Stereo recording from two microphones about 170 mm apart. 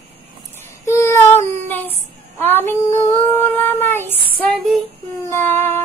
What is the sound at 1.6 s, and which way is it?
Female singing, 10° left (ahead or behind).